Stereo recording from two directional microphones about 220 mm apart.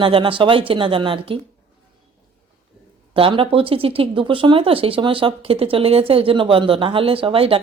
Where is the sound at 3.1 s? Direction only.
25° right (ahead or behind).